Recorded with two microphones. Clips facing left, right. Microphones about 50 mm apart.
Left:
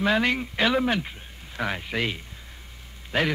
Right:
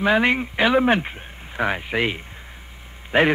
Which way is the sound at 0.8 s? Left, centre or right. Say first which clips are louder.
Right 6 dB; right.